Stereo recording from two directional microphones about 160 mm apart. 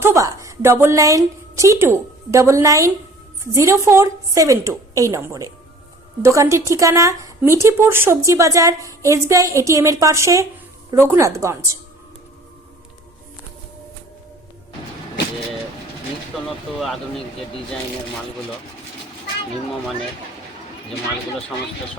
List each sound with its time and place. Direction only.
0.0 s a woman's voice: 20° right (ahead or behind)
16.8 s speech: centre (ahead or behind)